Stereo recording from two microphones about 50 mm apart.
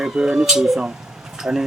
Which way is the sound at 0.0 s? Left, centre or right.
Centre.